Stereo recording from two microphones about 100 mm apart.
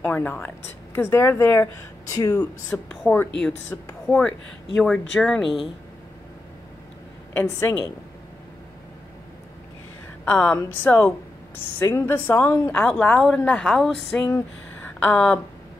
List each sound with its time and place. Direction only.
0.0 s a woman's voice: 15° left (ahead or behind)
2.3 s a woman's voice: 5° left (ahead or behind)
3.7 s a woman's voice: 30° left (ahead or behind)
4.1 s a woman's voice: 15° left (ahead or behind)
7.3 s a woman's voice: 20° left (ahead or behind)
10.2 s a woman's voice: 15° left (ahead or behind)
12.8 s a woman's voice: 10° left (ahead or behind)
15.0 s a woman's voice: 15° left (ahead or behind)